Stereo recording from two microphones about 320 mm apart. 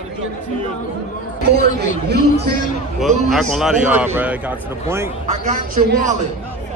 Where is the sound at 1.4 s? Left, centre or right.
Right.